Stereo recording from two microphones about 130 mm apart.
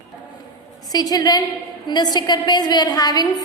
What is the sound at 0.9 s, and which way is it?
A woman's voice, 30° left (ahead or behind).